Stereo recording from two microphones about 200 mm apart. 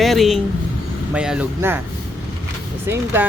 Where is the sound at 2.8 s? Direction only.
10° right (ahead or behind).